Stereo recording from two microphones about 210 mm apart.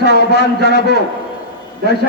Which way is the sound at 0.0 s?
55° left (ahead or behind).